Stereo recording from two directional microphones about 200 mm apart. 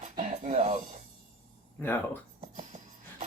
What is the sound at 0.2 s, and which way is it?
Music, 35° right (ahead or behind).